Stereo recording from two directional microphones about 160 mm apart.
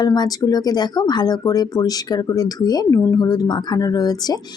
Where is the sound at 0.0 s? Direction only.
25° left (ahead or behind).